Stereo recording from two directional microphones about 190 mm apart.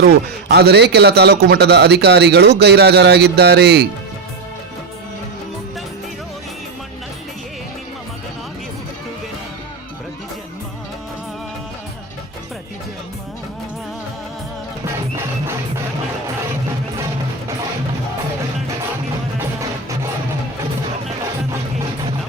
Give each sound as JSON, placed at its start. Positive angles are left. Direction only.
{"t": 0.4, "sound": "a man's voice", "side_deg": -60}